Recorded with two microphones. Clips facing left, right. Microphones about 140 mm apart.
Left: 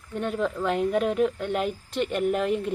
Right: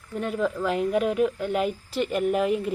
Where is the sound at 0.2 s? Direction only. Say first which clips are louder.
Right 1 dB; centre (ahead or behind).